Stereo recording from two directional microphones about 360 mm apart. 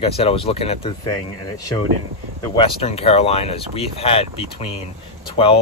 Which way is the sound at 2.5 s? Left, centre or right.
Centre.